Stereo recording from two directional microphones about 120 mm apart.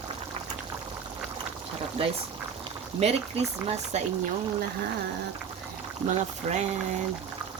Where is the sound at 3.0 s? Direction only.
60° right (ahead or behind).